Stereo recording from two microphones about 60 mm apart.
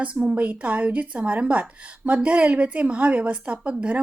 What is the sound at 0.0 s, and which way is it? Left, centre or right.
A woman's voice, right.